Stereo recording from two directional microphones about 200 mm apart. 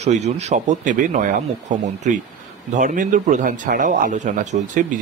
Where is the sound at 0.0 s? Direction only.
35° right (ahead or behind).